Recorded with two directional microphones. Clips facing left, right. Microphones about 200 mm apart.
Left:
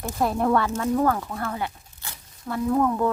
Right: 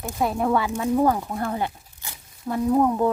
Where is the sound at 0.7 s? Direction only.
15° right (ahead or behind).